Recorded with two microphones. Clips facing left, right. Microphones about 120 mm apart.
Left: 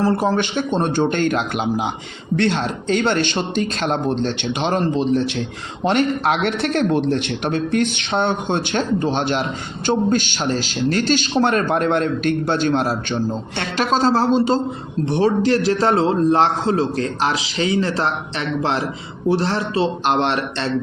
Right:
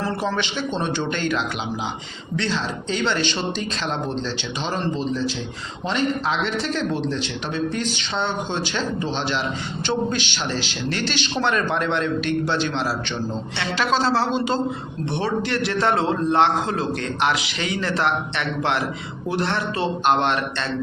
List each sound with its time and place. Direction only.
0.0 s a man's voice: 40° left (ahead or behind)